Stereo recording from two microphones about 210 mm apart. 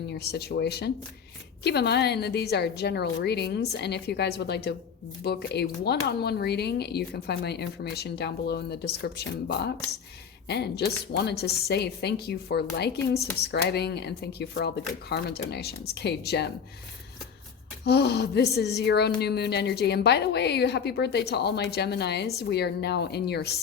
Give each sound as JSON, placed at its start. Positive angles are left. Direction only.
{"t": 0.3, "sound": "speech", "side_deg": 50}
{"t": 17.8, "sound": "speech", "side_deg": 50}